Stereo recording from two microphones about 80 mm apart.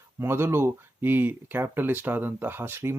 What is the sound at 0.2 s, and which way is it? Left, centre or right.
Speech, right.